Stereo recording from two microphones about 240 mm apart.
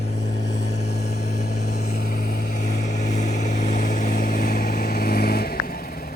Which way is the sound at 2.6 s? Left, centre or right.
Left.